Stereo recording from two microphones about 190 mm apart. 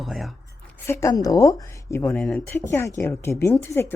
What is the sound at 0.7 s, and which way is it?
Speech, 15° left (ahead or behind).